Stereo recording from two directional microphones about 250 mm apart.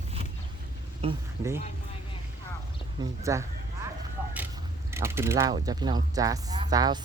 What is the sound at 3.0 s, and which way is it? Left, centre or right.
Speech, centre.